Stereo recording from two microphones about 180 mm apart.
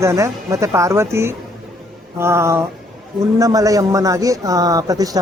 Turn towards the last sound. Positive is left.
turn(degrees=-20)  # may be behind; listen again after turning